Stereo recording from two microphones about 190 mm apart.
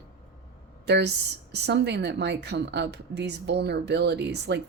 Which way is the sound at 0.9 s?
65° right (ahead or behind).